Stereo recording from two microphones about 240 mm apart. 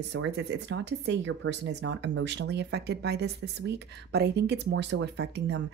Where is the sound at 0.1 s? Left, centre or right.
Right.